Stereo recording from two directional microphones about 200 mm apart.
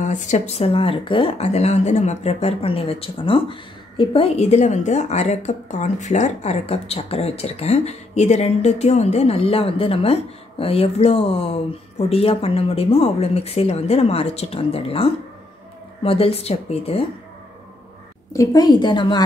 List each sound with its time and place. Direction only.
0.0 s speech: 35° left (ahead or behind)
18.3 s speech: 15° left (ahead or behind)